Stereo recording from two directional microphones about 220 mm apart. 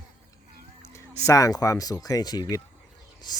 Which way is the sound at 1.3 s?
15° left (ahead or behind).